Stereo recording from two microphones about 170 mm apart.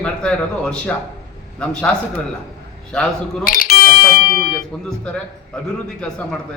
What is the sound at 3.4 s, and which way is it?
Music, 60° left (ahead or behind).